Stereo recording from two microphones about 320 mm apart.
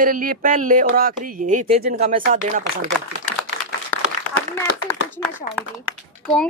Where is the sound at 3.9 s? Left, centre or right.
Centre.